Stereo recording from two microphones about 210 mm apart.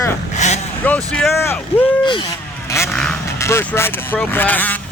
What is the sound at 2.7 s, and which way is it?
Vehicle, 10° left (ahead or behind).